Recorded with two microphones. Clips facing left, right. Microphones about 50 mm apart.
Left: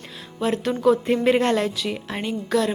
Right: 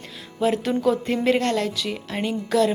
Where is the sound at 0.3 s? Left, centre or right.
Centre.